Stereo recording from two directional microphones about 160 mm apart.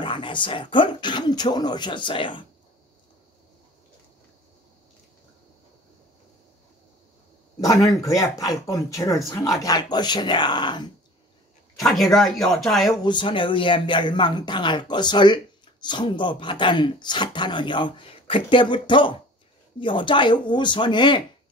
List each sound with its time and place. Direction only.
0.0 s speech: 30° left (ahead or behind)
7.6 s speech: 20° left (ahead or behind)
11.8 s speech: centre (ahead or behind)
13.0 s speech: 30° left (ahead or behind)